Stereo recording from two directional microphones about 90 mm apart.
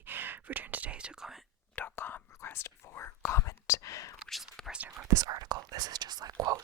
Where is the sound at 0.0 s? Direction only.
20° right (ahead or behind); by 1.4 s 5° right (ahead or behind).